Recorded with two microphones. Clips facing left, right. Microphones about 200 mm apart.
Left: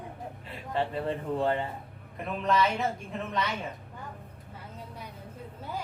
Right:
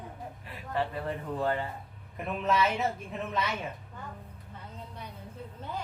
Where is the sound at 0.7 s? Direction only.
25° left (ahead or behind).